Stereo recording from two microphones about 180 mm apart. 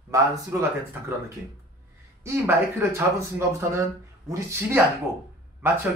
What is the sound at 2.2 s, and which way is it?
Speech, 15° right (ahead or behind).